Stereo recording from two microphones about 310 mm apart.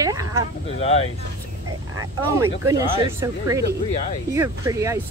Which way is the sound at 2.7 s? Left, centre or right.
Centre.